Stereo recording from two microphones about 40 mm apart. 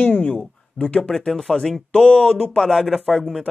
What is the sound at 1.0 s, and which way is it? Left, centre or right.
Speech, centre.